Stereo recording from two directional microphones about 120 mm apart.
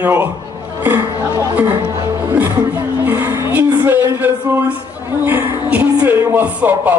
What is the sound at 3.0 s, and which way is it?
Speech, 15° right (ahead or behind).